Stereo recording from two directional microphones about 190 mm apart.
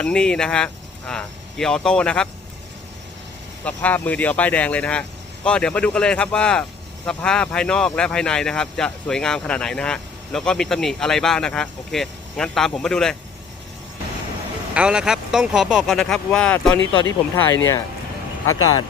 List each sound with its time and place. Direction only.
0.0 s speech: 5° left (ahead or behind)
3.6 s speech: 10° left (ahead or behind)
14.7 s speech: 5° right (ahead or behind); by 18.9 s 20° left (ahead or behind)